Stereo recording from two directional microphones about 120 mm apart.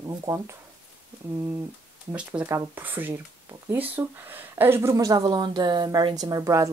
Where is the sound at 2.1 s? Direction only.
10° right (ahead or behind).